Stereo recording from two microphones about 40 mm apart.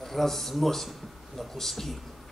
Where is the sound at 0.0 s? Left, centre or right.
Centre.